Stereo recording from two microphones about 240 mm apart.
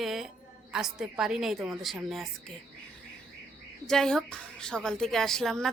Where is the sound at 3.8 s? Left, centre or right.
Centre.